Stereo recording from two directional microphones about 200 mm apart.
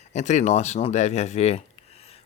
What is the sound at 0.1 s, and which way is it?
Speech, 35° left (ahead or behind).